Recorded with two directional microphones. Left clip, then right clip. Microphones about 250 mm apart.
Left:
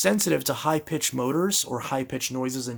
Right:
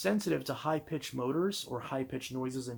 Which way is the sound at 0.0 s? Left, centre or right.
Left.